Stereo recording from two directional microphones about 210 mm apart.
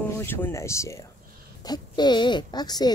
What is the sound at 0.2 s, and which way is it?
Speech, 10° left (ahead or behind).